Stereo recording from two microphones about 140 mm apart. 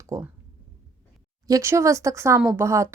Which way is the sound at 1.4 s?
20° right (ahead or behind).